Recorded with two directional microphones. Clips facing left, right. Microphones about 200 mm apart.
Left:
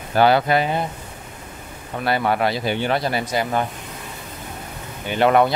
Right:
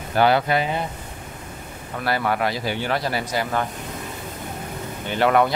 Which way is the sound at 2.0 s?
25° left (ahead or behind).